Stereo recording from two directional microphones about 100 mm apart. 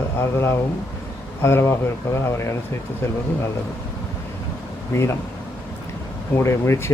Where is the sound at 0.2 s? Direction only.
25° left (ahead or behind).